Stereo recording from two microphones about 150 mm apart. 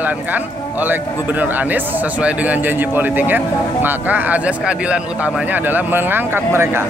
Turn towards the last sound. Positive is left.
turn(degrees=-15)  # may be behind; listen again after turning